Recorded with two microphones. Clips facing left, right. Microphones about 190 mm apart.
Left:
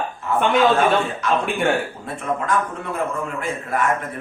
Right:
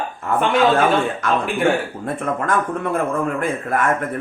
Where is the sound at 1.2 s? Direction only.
50° right (ahead or behind).